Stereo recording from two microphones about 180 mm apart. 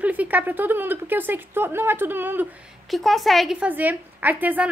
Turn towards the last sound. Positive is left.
turn(degrees=-10)  # may be behind; listen again after turning